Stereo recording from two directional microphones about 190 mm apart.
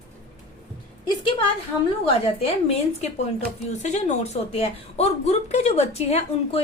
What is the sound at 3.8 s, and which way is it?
A woman's voice, 35° left (ahead or behind).